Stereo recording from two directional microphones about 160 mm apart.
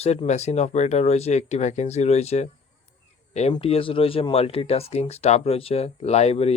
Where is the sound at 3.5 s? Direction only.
35° left (ahead or behind).